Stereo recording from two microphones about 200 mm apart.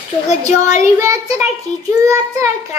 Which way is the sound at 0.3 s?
35° left (ahead or behind).